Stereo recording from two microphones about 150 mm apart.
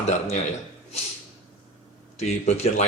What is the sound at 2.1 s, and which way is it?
Speech, 45° left (ahead or behind).